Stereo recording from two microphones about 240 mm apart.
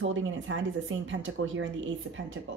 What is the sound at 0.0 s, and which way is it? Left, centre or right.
A woman's voice, right.